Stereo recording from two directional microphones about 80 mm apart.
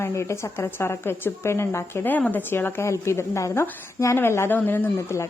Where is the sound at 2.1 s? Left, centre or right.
Left.